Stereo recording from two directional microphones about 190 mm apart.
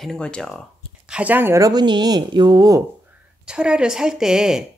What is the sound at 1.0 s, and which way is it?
Speech, 5° right (ahead or behind).